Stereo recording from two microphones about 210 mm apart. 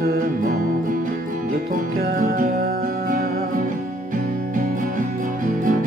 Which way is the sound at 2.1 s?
40° right (ahead or behind).